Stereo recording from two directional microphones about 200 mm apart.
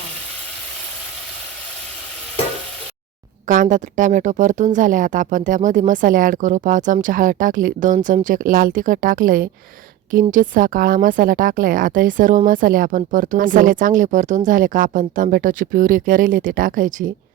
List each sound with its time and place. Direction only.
3.4 s speech: 40° right (ahead or behind)